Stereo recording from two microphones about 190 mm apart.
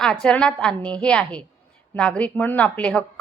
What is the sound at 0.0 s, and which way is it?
A woman's voice, 5° left (ahead or behind).